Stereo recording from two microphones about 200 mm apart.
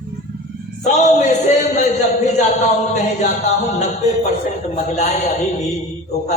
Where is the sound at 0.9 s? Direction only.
35° left (ahead or behind).